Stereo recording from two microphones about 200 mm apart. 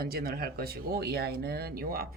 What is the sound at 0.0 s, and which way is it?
Speech, 50° right (ahead or behind).